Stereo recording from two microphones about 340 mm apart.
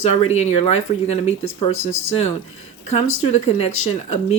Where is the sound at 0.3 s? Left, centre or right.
Centre.